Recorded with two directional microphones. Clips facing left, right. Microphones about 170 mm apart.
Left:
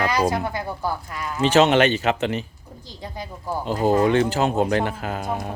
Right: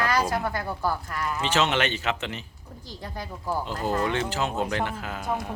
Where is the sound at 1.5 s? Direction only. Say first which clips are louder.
Left 9 dB; 45° left (ahead or behind).